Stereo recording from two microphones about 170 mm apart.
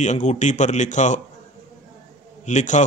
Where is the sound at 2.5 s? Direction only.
45° left (ahead or behind).